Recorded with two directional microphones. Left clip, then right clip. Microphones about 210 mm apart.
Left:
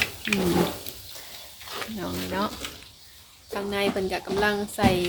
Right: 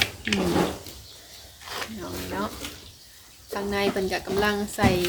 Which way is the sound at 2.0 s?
45° left (ahead or behind).